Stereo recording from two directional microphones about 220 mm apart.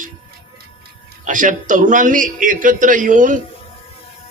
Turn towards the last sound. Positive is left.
turn(degrees=-35)  # may be behind; listen again after turning